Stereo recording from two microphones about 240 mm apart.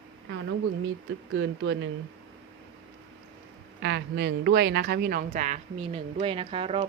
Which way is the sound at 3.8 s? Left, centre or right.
Right.